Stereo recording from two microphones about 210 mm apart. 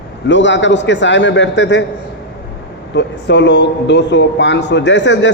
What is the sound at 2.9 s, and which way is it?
A man's voice, 55° left (ahead or behind).